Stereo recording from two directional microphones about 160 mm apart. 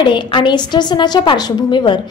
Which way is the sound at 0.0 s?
30° left (ahead or behind).